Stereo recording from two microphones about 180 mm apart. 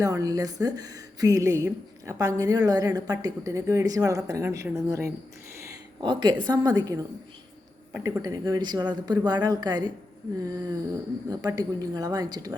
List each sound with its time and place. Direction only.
0.0 s a woman's voice: 20° right (ahead or behind)
7.9 s speech: 10° right (ahead or behind)
8.2 s a woman's voice: 20° right (ahead or behind)